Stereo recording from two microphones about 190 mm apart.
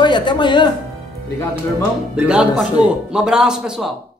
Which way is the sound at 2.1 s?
5° right (ahead or behind).